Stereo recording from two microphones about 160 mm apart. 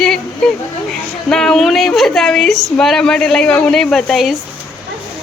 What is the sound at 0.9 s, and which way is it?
A woman's voice, 5° left (ahead or behind).